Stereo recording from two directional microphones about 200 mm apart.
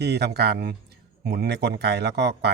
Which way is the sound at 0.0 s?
55° right (ahead or behind).